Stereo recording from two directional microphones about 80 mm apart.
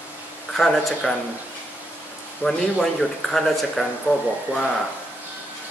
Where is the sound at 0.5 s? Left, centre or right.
Centre.